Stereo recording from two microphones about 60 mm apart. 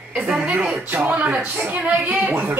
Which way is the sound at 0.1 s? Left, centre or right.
Centre.